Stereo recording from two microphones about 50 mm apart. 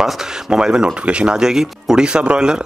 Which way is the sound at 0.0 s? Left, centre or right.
Centre.